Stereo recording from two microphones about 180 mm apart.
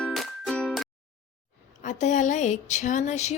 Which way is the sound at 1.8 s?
45° left (ahead or behind).